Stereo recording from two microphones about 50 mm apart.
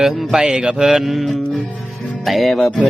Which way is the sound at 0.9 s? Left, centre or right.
Centre.